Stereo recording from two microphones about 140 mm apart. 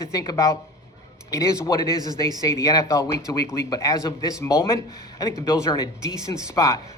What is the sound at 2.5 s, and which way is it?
Speech, 25° left (ahead or behind).